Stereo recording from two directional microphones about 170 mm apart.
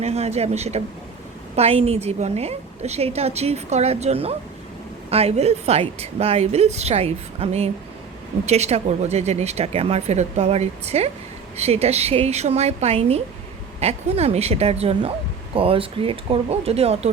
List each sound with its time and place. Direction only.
0.0 s a woman's voice: 40° right (ahead or behind)